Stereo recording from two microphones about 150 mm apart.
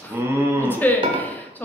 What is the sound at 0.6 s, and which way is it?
Speech, 10° left (ahead or behind).